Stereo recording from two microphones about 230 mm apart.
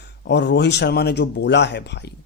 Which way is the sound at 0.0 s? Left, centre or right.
Left.